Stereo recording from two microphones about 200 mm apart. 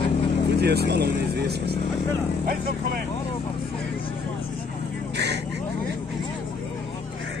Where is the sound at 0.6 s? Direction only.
55° right (ahead or behind).